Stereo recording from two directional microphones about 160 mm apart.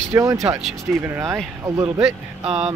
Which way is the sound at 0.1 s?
20° right (ahead or behind).